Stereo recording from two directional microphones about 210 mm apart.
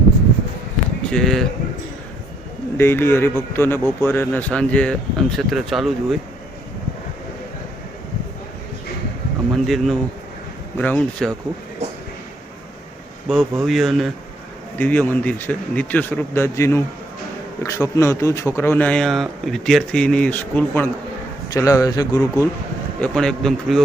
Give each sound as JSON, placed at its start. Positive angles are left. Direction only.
{"t": 1.1, "sound": "speech", "side_deg": 0}
{"t": 2.7, "sound": "speech", "side_deg": 10}
{"t": 9.6, "sound": "speech", "side_deg": 0}
{"t": 13.2, "sound": "speech", "side_deg": 0}
{"t": 23.0, "sound": "speech", "side_deg": 5}